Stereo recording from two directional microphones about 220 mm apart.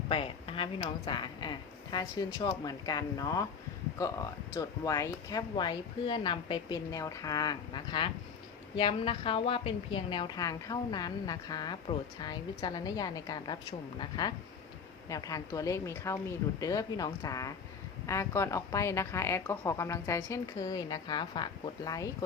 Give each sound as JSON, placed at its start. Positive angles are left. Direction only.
{"t": 0.1, "sound": "speech", "side_deg": 25}